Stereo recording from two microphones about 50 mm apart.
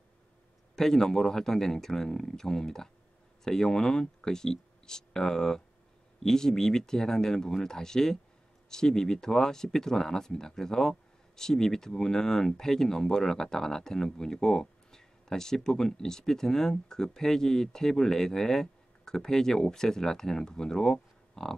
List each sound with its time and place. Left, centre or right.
0.7 s speech: centre